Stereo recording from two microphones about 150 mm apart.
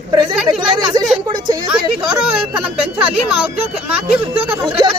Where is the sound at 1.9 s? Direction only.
5° right (ahead or behind).